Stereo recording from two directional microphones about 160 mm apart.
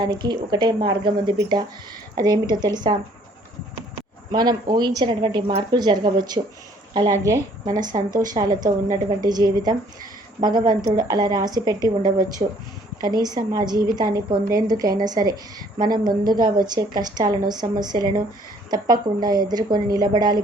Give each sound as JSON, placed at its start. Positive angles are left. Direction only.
{"t": 0.0, "sound": "a woman's voice", "side_deg": -25}
{"t": 4.3, "sound": "a woman's voice", "side_deg": -25}
{"t": 7.9, "sound": "a woman's voice", "side_deg": -30}
{"t": 12.4, "sound": "speech", "side_deg": -45}
{"t": 13.2, "sound": "a woman's voice", "side_deg": -25}